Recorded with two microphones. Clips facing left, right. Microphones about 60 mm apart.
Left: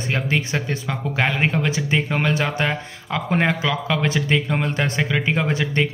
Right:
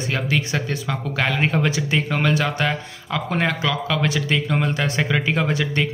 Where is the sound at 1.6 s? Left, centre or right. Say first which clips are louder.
Even; left.